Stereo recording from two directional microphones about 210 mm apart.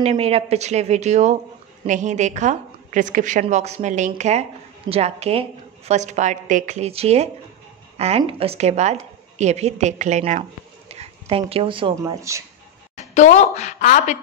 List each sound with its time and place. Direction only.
0.0 s a woman's voice: 30° right (ahead or behind)
13.1 s speech: 35° left (ahead or behind)